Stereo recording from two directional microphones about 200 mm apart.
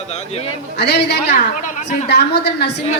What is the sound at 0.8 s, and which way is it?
Speech, 55° left (ahead or behind).